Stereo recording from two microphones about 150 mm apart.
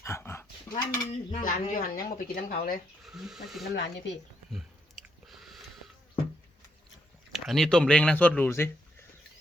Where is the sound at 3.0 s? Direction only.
Centre (ahead or behind).